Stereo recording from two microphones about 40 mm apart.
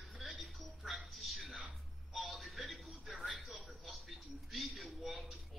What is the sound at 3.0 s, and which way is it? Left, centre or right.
Television, centre.